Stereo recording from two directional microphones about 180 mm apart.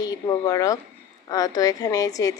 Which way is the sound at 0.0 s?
20° left (ahead or behind).